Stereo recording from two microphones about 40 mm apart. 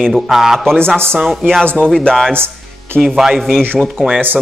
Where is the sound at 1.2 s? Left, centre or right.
Centre.